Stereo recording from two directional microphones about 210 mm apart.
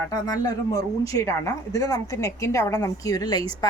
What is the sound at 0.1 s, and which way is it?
Speech, 20° left (ahead or behind).